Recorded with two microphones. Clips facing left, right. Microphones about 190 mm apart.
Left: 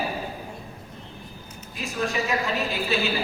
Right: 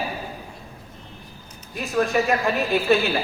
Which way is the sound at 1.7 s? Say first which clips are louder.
Right 6 dB; 55° right (ahead or behind).